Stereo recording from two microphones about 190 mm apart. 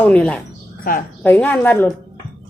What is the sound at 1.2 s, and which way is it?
Speech, 5° left (ahead or behind).